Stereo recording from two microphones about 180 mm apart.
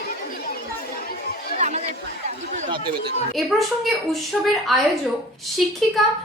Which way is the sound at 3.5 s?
Centre (ahead or behind).